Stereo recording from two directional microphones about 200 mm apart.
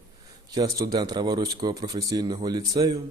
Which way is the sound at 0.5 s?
15° right (ahead or behind).